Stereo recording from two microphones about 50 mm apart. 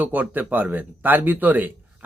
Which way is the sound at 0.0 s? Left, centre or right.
Right.